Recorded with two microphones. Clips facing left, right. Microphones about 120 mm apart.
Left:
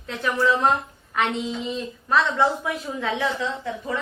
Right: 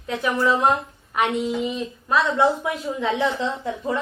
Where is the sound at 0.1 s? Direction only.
15° right (ahead or behind).